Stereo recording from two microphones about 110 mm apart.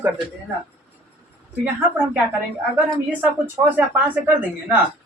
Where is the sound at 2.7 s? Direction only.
15° right (ahead or behind).